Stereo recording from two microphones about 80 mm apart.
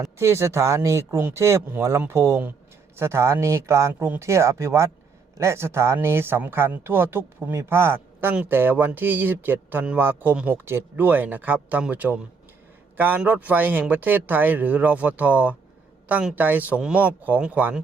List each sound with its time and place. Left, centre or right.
0.2 s a man's voice: right; by 17.7 s centre